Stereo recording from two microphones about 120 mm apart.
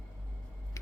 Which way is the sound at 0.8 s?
25° left (ahead or behind).